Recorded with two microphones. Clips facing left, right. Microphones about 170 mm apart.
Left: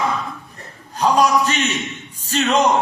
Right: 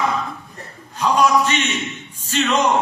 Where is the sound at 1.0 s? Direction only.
40° left (ahead or behind).